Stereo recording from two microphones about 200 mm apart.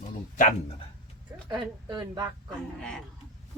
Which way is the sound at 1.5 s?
20° right (ahead or behind).